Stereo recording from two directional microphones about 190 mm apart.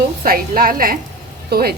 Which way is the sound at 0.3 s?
50° right (ahead or behind).